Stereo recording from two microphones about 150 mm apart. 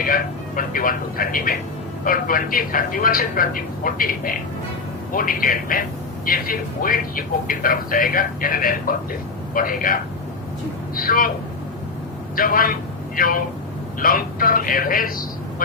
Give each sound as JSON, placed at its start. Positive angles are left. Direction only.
{"t": 0.0, "sound": "speech", "side_deg": 70}
{"t": 12.4, "sound": "speech", "side_deg": 70}